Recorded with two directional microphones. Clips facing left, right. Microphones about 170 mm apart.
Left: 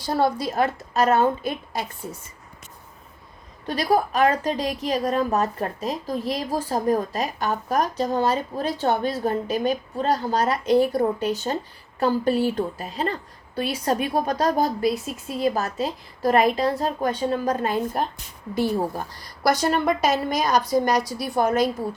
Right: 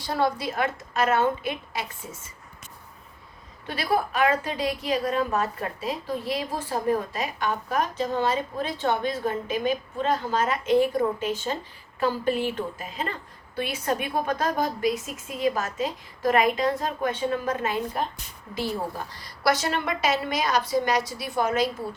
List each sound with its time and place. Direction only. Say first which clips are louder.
0.2 s a woman's voice: left 3 dB; 40° left (ahead or behind)
3.7 s a woman's voice: left 4 dB; 40° left (ahead or behind)
19.2 s a woman's voice: left 3 dB; 45° left (ahead or behind)